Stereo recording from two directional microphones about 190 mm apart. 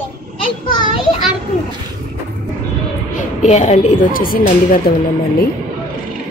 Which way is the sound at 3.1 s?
40° left (ahead or behind).